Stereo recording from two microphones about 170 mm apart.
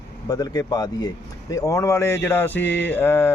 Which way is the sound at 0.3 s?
20° left (ahead or behind).